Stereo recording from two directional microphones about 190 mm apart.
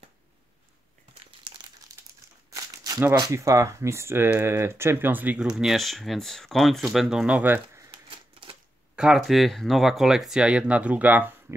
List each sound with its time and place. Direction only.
2.5 s crumpling: 20° right (ahead or behind)
3.0 s speech: 15° right (ahead or behind)
7.9 s typewriter: 30° right (ahead or behind)
8.9 s speech: 5° right (ahead or behind)